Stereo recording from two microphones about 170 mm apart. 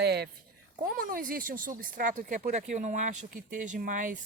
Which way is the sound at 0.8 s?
55° right (ahead or behind).